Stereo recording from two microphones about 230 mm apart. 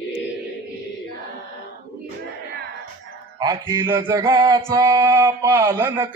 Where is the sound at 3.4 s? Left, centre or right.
Centre.